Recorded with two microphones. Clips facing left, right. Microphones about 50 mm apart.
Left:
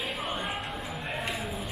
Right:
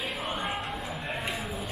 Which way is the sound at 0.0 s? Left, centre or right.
Centre.